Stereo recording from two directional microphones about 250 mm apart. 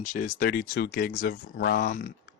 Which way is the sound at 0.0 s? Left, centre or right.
Left.